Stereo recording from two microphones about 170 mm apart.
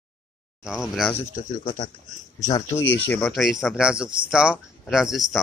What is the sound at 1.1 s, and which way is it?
Speech, 50° left (ahead or behind).